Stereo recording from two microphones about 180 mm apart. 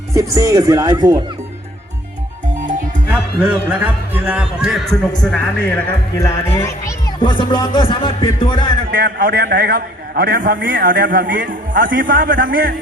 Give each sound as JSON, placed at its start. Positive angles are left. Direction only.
{"t": 0.3, "sound": "speech", "side_deg": -20}
{"t": 3.1, "sound": "speech", "side_deg": -5}
{"t": 6.1, "sound": "a man's voice", "side_deg": 20}
{"t": 8.9, "sound": "a man's voice", "side_deg": -60}